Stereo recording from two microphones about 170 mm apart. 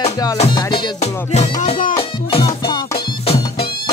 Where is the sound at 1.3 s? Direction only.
40° left (ahead or behind).